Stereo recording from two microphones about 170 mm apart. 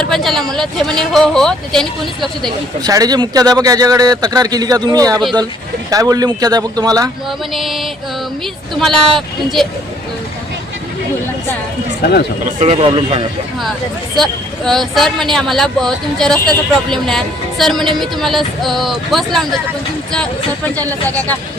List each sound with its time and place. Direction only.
0.0 s speech: centre (ahead or behind)
2.8 s speech: 20° right (ahead or behind)
7.3 s speech: centre (ahead or behind)
12.6 s a man's voice: 35° right (ahead or behind)
14.2 s speech: centre (ahead or behind)
20.7 s speech: 10° left (ahead or behind)